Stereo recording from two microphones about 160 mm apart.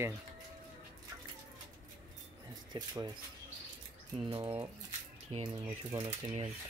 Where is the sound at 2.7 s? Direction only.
25° right (ahead or behind).